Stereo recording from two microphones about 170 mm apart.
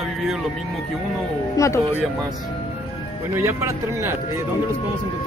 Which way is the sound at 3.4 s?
15° right (ahead or behind).